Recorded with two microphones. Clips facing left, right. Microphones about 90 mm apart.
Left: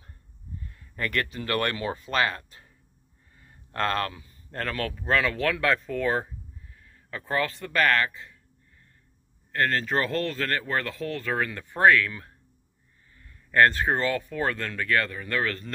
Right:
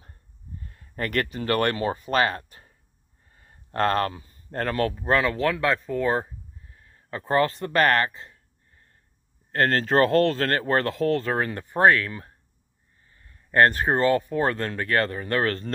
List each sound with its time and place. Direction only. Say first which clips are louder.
0.7 s speech: right 2 dB; 40° right (ahead or behind); by 6.2 s 25° right (ahead or behind)
6.7 s a sound: right 4 dB; 30° right (ahead or behind)
9.5 s speech: right 4 dB; 50° right (ahead or behind)
10.2 s speech: right 6 dB; 55° right (ahead or behind)
10.6 s speech: right 7 dB; 45° right (ahead or behind)
11.1 s speech: right 3 dB; 35° right (ahead or behind)
13.1 s a sound: right 2 dB; 30° right (ahead or behind)
13.7 s speech: right 2 dB; 20° right (ahead or behind)
13.9 s speech: right 6 dB; 35° right (ahead or behind)